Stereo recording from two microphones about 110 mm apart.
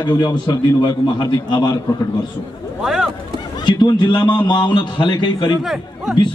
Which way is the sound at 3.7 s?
45° left (ahead or behind).